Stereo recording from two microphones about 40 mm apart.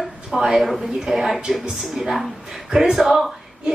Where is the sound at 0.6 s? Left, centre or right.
Centre.